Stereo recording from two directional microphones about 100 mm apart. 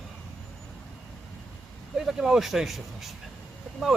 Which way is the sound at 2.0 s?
5° right (ahead or behind).